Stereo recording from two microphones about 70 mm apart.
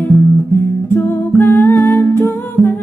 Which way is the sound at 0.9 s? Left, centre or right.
Left.